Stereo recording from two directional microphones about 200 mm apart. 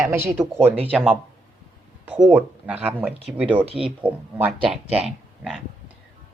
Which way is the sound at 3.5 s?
30° right (ahead or behind).